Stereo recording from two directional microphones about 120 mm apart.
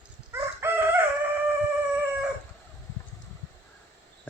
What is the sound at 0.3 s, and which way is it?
Chicken, 20° right (ahead or behind).